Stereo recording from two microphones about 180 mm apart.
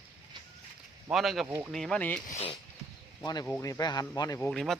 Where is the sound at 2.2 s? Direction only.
35° left (ahead or behind).